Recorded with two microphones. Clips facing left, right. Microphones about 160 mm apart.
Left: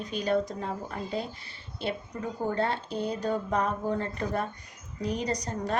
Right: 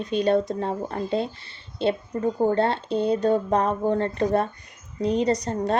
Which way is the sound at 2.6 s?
25° right (ahead or behind).